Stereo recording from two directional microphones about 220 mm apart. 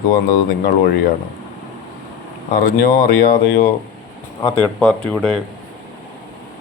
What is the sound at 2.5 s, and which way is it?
Speech, 40° left (ahead or behind).